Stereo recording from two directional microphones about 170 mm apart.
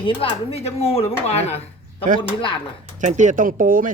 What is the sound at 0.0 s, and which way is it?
Speech, 30° left (ahead or behind).